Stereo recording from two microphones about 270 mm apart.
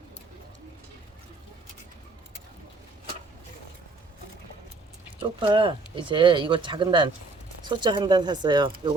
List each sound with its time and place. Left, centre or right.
5.2 s speech: centre